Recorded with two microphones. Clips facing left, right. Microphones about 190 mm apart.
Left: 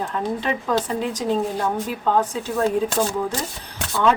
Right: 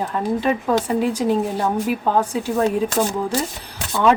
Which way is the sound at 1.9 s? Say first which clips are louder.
Right 2 dB; 15° right (ahead or behind).